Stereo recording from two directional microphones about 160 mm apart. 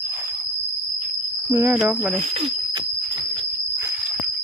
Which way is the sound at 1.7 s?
5° right (ahead or behind).